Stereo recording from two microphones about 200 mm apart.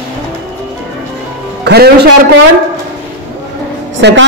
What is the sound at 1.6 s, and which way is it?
Speech, 55° right (ahead or behind).